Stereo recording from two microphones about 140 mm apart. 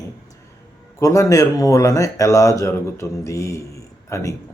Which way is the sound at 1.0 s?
25° left (ahead or behind).